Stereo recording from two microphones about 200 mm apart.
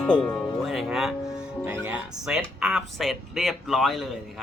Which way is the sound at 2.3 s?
Centre (ahead or behind).